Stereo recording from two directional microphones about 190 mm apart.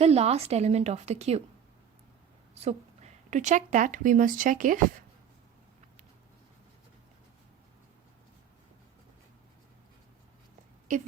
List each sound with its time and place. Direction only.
0.0 s a woman's voice: 35° right (ahead or behind)
2.6 s speech: 35° right (ahead or behind)
10.9 s a woman's voice: 40° right (ahead or behind)